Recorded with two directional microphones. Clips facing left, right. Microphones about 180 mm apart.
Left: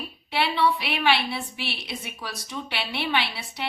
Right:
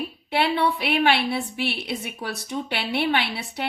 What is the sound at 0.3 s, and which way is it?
A woman's voice, 55° right (ahead or behind).